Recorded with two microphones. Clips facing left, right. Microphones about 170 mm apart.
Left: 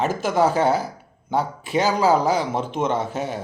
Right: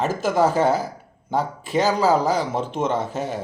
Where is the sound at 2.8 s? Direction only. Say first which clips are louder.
Even; 45° right (ahead or behind).